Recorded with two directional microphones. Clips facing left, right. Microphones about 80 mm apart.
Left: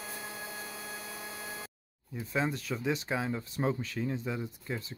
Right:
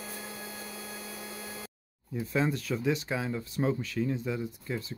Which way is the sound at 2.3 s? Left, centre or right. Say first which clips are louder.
Right 3 dB; centre.